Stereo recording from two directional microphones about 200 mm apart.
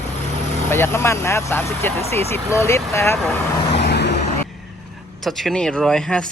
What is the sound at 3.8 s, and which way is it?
Vehicle, 55° left (ahead or behind).